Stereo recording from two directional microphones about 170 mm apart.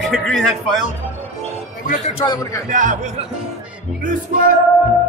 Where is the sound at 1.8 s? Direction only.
40° left (ahead or behind).